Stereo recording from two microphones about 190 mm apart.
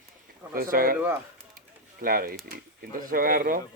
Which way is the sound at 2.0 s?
50° right (ahead or behind).